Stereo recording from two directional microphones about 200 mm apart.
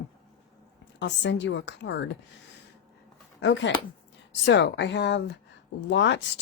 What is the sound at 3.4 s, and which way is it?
Speech, 65° left (ahead or behind).